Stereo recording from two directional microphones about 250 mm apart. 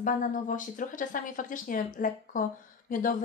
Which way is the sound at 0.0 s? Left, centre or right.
Left.